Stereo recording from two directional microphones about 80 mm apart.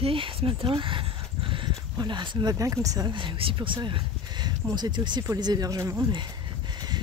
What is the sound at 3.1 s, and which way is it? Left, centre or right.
Speech, right.